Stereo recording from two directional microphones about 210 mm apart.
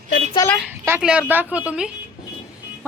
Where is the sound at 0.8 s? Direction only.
10° right (ahead or behind).